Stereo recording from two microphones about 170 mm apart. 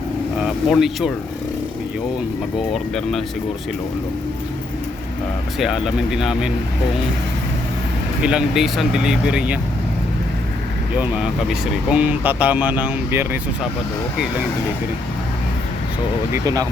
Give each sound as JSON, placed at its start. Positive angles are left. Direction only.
{"t": 0.3, "sound": "speech", "side_deg": 0}
{"t": 2.7, "sound": "speech", "side_deg": 0}
{"t": 5.5, "sound": "speech", "side_deg": -5}
{"t": 8.2, "sound": "speech", "side_deg": -5}
{"t": 10.9, "sound": "speech", "side_deg": -10}
{"t": 16.3, "sound": "speech", "side_deg": -20}